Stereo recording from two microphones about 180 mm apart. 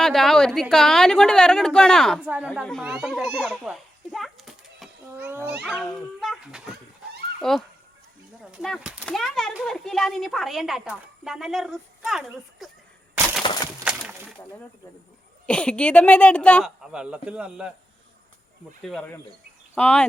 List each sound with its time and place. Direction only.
0.0 s a woman's voice: centre (ahead or behind)
2.2 s a child's voice: 5° right (ahead or behind)
5.1 s a child's voice: 10° right (ahead or behind)
5.6 s a child's voice: centre (ahead or behind)
13.4 s crushing: 25° left (ahead or behind)
13.9 s a sound: 5° right (ahead or behind)
15.4 s a woman's voice: 5° left (ahead or behind)
18.8 s a woman's voice: 5° left (ahead or behind)